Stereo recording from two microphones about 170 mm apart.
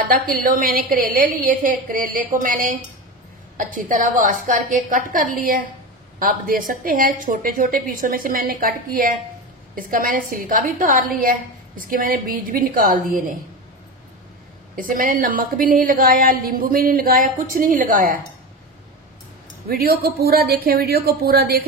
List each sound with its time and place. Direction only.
0.0 s a woman's voice: 55° right (ahead or behind)
14.8 s a woman's voice: 50° right (ahead or behind)
19.7 s a woman's voice: 65° right (ahead or behind)